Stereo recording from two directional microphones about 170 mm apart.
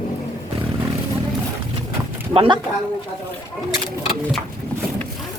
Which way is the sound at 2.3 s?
30° right (ahead or behind).